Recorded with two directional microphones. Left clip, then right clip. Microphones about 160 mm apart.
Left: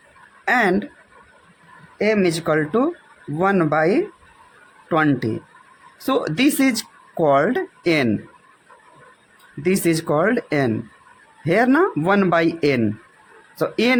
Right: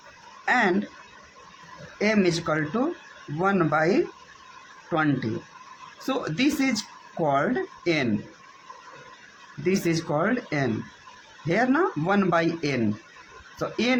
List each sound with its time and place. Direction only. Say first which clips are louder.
0.4 s speech: left 4 dB; 65° left (ahead or behind)
2.0 s speech: left 5 dB; 55° left (ahead or behind); by 8.0 s 75° left (ahead or behind)
9.6 s speech: left 6 dB; 70° left (ahead or behind)